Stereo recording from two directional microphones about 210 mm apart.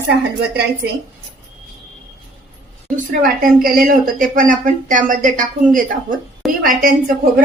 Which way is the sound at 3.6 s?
40° right (ahead or behind).